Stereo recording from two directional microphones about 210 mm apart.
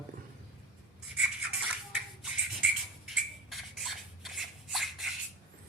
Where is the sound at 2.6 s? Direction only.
Centre (ahead or behind).